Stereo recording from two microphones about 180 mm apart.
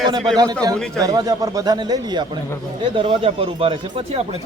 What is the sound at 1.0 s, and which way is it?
A man's voice, 20° right (ahead or behind).